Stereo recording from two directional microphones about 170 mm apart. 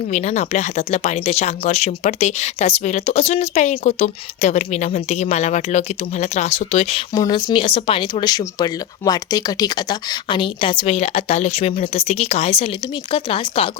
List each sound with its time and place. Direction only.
0.1 s speech: 40° left (ahead or behind)